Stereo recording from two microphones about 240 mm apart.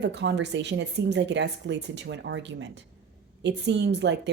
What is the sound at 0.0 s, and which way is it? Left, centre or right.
Speech, right.